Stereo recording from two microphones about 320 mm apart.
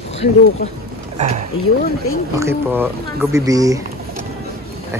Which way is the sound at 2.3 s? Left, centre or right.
Centre.